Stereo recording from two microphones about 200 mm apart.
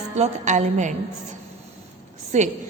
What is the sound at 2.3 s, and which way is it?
Speech, 35° right (ahead or behind).